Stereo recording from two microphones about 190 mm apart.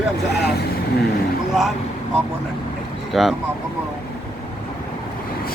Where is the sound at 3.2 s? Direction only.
Centre (ahead or behind).